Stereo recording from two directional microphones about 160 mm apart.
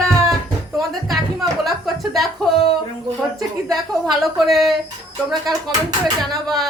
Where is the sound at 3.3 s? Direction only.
25° right (ahead or behind).